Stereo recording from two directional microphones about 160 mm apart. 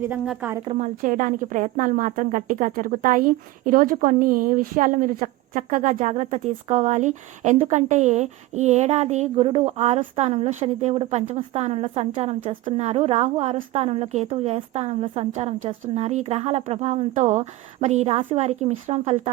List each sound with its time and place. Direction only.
0.1 s a woman's voice: 10° right (ahead or behind)
0.6 s a woman's voice: 35° right (ahead or behind)
1.0 s a woman's voice: 55° right (ahead or behind)